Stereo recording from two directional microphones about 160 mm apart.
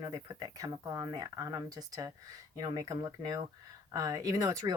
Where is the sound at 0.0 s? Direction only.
25° right (ahead or behind).